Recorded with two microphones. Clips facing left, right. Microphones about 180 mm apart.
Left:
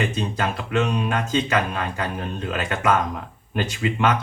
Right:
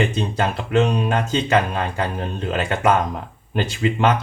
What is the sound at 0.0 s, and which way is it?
Speech, 30° right (ahead or behind).